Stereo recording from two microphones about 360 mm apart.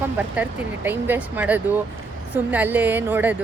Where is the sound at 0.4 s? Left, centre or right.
Centre.